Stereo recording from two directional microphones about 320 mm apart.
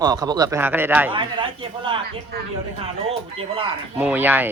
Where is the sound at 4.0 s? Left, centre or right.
Centre.